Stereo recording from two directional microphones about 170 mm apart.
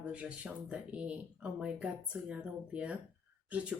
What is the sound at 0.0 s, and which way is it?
Speech, 5° right (ahead or behind).